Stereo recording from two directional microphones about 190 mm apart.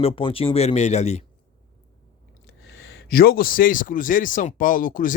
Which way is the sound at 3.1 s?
55° left (ahead or behind).